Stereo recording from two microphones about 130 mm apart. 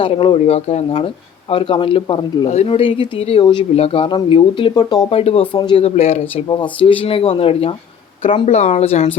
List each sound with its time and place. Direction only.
0.0 s speech: 45° left (ahead or behind)
0.9 s speech: 45° left (ahead or behind)
5.1 s speech: 50° left (ahead or behind)
6.5 s speech: 40° left (ahead or behind)